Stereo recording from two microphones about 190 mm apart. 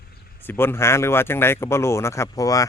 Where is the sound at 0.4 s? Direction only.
10° left (ahead or behind).